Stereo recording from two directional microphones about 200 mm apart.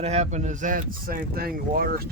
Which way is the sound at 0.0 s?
35° right (ahead or behind).